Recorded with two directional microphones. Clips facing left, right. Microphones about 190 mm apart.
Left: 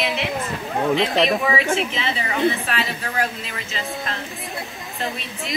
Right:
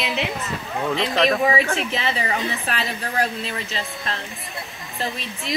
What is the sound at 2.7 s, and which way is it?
Speech, 40° right (ahead or behind).